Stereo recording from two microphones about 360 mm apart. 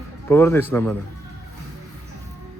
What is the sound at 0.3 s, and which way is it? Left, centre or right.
Speech, centre.